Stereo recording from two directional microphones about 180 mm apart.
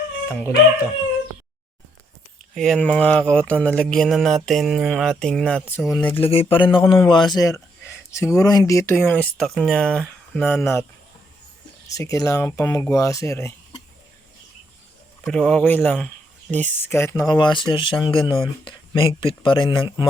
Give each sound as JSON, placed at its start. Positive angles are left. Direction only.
{"t": 2.6, "sound": "mantra", "side_deg": 5}
{"t": 6.1, "sound": "speech", "side_deg": 30}
{"t": 11.9, "sound": "speech", "side_deg": 20}
{"t": 15.3, "sound": "mantra", "side_deg": 5}
{"t": 16.5, "sound": "speech", "side_deg": 10}